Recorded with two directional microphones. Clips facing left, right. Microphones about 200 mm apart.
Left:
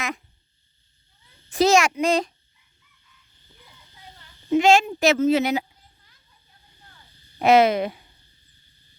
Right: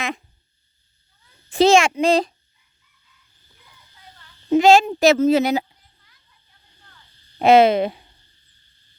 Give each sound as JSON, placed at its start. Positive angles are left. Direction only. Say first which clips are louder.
{"t": 1.5, "sound": "a child's voice", "louder": "right 4 dB", "side_deg": -30}
{"t": 4.5, "sound": "speech", "louder": "right 4 dB", "side_deg": -35}
{"t": 7.3, "sound": "a child's voice", "louder": "right 3 dB", "side_deg": -30}